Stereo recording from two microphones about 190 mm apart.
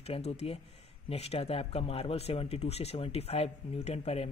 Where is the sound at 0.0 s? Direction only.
30° left (ahead or behind).